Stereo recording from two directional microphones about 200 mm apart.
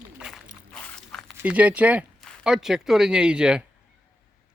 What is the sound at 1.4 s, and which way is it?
Speech, 5° right (ahead or behind).